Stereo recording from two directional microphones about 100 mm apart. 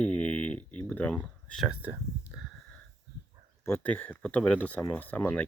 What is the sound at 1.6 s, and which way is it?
Speech, 15° right (ahead or behind).